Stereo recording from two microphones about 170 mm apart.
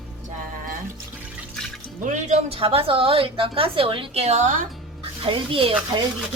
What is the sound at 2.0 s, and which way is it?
A woman's voice, 45° right (ahead or behind).